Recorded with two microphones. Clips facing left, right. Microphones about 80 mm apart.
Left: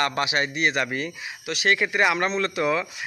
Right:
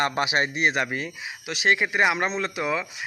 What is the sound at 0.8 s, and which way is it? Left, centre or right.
Speech, centre.